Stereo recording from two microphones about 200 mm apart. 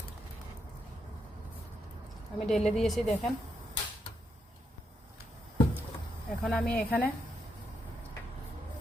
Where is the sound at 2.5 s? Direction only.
Centre (ahead or behind).